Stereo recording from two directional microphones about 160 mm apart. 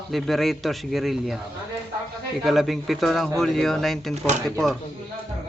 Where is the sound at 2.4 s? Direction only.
Centre (ahead or behind).